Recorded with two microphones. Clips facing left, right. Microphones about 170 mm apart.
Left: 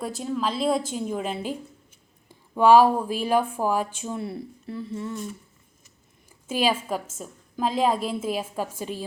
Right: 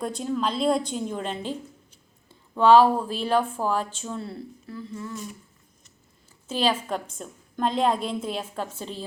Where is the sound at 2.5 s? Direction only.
10° left (ahead or behind).